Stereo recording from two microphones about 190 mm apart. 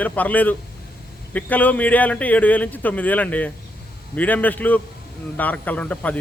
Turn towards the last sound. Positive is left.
turn(degrees=5)  # may be behind; listen again after turning